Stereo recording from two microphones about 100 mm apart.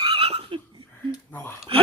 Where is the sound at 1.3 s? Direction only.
20° left (ahead or behind).